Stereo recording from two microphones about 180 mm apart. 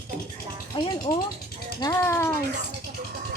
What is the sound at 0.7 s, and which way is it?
Speech, 30° left (ahead or behind).